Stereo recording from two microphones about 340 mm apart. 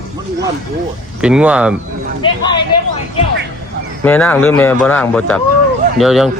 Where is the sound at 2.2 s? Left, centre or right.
Centre.